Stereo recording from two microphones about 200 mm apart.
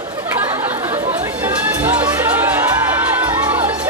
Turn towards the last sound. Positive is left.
turn(degrees=-10)  # may be behind; listen again after turning